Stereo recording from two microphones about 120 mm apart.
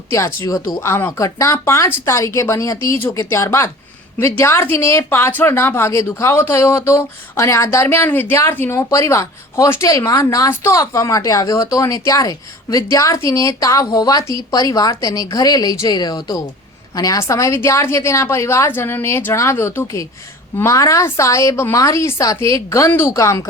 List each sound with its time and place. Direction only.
0.1 s speech: 25° left (ahead or behind)
0.8 s a woman's voice: 20° left (ahead or behind)